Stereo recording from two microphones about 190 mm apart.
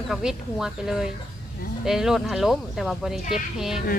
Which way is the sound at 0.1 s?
5° right (ahead or behind).